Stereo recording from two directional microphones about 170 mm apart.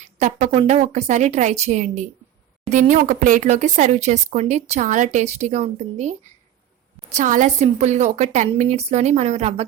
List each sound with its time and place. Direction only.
0.0 s speech: 45° right (ahead or behind)
7.2 s a woman's voice: 50° right (ahead or behind)